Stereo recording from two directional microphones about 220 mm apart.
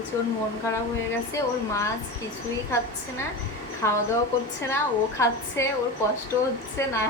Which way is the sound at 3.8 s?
10° left (ahead or behind).